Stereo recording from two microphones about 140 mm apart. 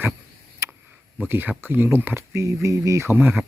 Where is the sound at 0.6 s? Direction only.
20° right (ahead or behind).